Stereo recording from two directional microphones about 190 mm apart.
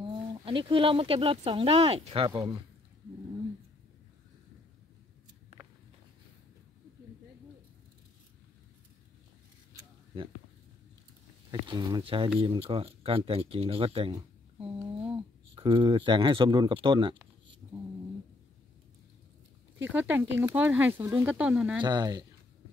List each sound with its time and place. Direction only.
0.0 s speech: 25° right (ahead or behind)
5.5 s walk: 35° right (ahead or behind)
9.8 s a sound: 25° right (ahead or behind)
11.6 s speech: 25° right (ahead or behind)
14.6 s a sound: 5° right (ahead or behind)
15.5 s speech: 25° right (ahead or behind)
19.9 s speech: 10° right (ahead or behind)
21.8 s speech: 20° right (ahead or behind)